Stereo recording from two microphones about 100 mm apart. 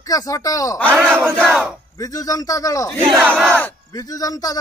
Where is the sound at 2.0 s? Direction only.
35° left (ahead or behind).